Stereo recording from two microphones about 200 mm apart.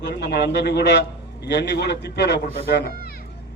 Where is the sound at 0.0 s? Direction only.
60° left (ahead or behind).